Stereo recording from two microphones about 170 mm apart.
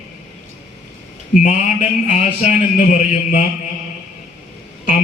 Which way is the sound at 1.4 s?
45° left (ahead or behind).